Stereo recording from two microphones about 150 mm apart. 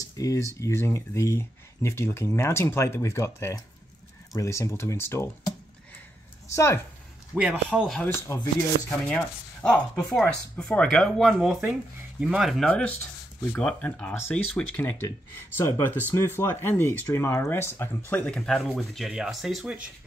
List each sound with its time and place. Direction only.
0.0 s a sound: 20° left (ahead or behind)
0.6 s speech: 20° left (ahead or behind)
6.5 s speech: 20° left (ahead or behind)
7.3 s speech: 5° right (ahead or behind)
8.0 s speech: 15° left (ahead or behind)
18.2 s speech: 5° left (ahead or behind)